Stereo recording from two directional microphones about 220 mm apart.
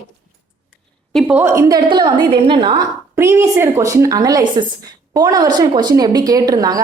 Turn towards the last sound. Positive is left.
turn(degrees=-15)  # may be behind; listen again after turning